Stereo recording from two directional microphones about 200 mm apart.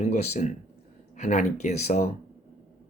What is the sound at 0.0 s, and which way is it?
Speech, 35° left (ahead or behind).